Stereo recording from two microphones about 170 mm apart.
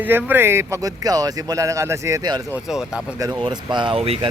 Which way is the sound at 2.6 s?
5° right (ahead or behind).